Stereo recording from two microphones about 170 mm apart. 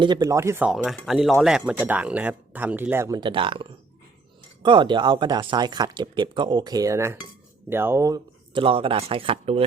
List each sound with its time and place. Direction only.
0.0 s speech: 20° right (ahead or behind)
3.2 s speech: 30° right (ahead or behind)